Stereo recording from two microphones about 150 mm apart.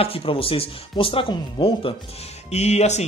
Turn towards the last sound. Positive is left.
turn(degrees=50)  # may be behind; listen again after turning